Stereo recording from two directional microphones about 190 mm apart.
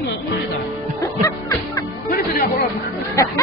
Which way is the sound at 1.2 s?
15° left (ahead or behind).